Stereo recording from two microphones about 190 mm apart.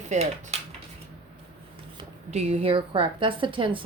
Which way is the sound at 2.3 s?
35° right (ahead or behind).